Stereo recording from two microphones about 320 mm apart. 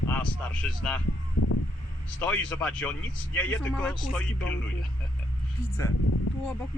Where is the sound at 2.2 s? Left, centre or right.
Centre.